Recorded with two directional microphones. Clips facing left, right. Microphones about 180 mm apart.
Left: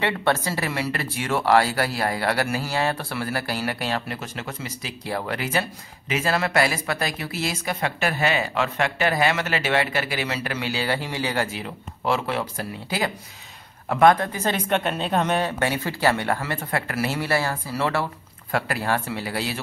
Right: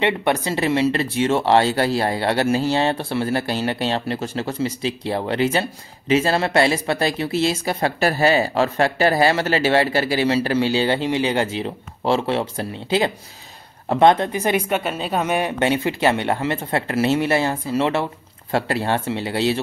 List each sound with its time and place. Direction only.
0.0 s speech: 20° right (ahead or behind)
14.8 s speech: 5° right (ahead or behind); by 19.6 s 25° right (ahead or behind)